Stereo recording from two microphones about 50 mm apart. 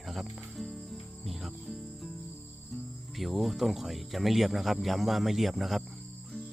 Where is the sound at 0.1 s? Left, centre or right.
Centre.